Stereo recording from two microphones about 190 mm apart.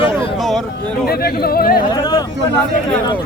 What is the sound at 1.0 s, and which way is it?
Speech, 55° left (ahead or behind).